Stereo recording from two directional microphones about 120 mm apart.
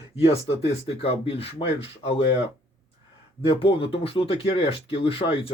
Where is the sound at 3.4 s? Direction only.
50° left (ahead or behind).